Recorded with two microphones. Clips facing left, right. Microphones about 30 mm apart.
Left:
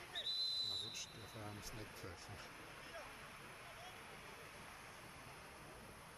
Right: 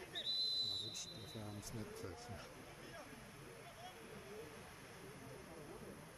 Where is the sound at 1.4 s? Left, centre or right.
Left.